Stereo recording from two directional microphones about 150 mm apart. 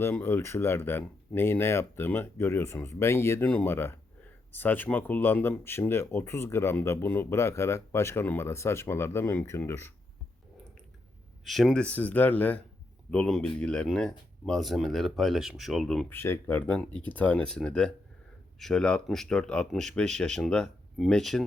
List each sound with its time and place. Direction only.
0.0 s speech: 15° left (ahead or behind)
11.4 s speech: centre (ahead or behind)
16.0 s speech: 15° left (ahead or behind)